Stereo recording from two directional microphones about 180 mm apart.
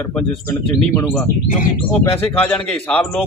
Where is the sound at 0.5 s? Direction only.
15° left (ahead or behind).